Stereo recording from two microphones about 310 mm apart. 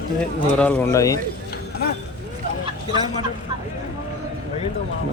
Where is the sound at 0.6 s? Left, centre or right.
Centre.